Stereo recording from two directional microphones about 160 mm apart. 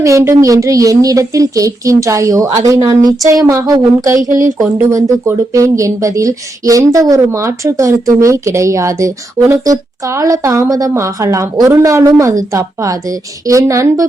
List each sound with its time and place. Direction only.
0.0 s speech: 20° right (ahead or behind)